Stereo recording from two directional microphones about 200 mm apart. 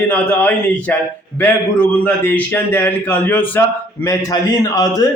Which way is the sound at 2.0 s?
10° left (ahead or behind).